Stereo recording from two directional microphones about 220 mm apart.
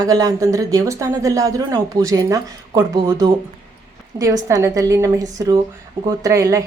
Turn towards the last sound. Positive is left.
turn(degrees=-15)  # may be behind; listen again after turning